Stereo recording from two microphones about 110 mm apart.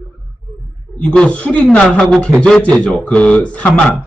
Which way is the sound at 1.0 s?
10° left (ahead or behind).